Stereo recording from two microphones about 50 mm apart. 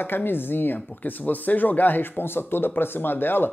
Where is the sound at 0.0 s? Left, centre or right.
Left.